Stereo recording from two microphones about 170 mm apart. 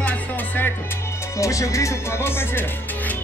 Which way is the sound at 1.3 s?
20° left (ahead or behind).